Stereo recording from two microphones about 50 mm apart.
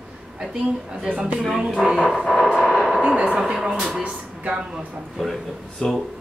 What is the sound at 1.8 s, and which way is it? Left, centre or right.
Music, centre.